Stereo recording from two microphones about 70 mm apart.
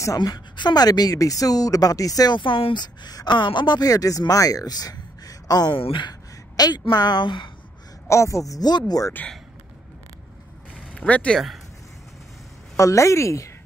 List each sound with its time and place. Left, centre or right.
0.2 s a woman's voice: left
8.1 s a woman's voice: left
8.6 s speech: left
11.0 s speech: centre
12.7 s a woman's voice: left